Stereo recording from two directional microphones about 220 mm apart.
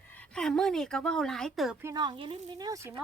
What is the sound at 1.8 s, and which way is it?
Speech, 20° right (ahead or behind).